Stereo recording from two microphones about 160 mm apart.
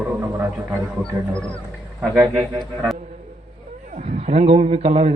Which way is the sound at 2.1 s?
5° right (ahead or behind).